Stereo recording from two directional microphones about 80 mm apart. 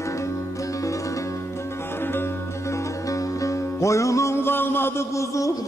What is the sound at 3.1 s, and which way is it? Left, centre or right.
Music, left.